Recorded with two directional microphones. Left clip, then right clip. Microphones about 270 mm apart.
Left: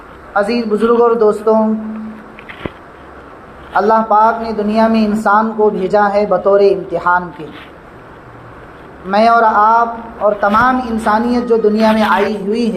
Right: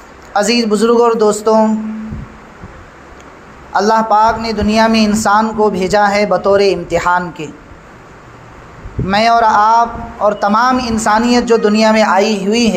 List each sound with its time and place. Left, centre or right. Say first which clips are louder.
0.3 s a man's voice: right 2 dB; right
3.8 s a man's voice: even; right
9.0 s a man's voice: even; right